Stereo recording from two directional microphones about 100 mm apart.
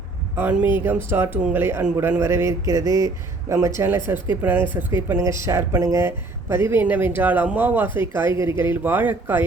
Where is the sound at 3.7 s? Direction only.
20° right (ahead or behind).